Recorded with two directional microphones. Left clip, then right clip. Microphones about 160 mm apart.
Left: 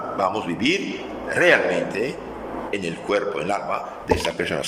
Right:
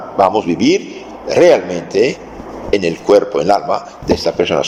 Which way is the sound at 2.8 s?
30° right (ahead or behind).